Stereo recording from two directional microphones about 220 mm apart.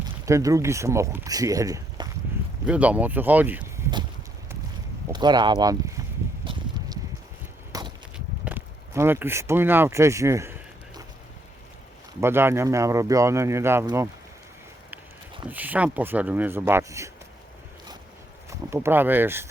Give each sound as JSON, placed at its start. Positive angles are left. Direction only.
{"t": 0.3, "sound": "speech", "side_deg": -15}
{"t": 5.1, "sound": "speech", "side_deg": -20}
{"t": 6.4, "sound": "a sound", "side_deg": -20}
{"t": 12.2, "sound": "speech", "side_deg": -10}
{"t": 15.4, "sound": "speech", "side_deg": -10}
{"t": 18.7, "sound": "speech", "side_deg": -10}